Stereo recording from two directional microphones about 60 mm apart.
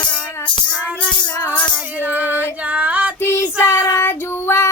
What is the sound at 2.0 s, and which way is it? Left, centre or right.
Female singing, right.